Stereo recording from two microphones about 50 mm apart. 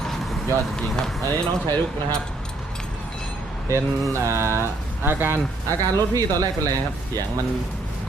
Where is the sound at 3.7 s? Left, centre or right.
Right.